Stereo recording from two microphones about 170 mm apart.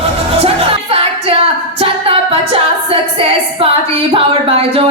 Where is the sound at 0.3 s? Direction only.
35° right (ahead or behind).